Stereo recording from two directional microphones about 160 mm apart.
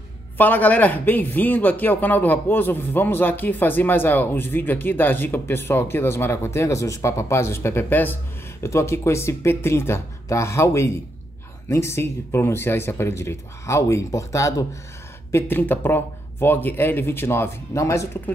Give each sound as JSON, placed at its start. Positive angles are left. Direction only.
{"t": 0.4, "sound": "a man's voice", "side_deg": 10}